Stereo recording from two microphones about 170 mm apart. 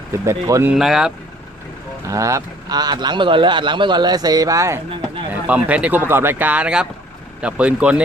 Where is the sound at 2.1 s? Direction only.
20° right (ahead or behind).